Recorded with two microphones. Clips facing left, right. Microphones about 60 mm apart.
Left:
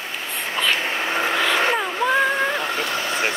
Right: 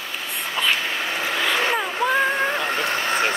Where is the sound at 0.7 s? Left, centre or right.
Left.